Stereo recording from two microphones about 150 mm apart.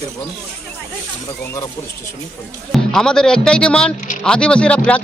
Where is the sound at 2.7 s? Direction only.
5° left (ahead or behind).